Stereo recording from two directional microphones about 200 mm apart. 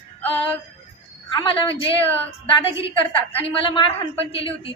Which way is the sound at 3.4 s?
25° left (ahead or behind).